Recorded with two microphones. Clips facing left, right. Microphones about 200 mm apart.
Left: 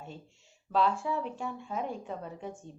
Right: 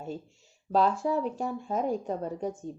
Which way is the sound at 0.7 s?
40° right (ahead or behind).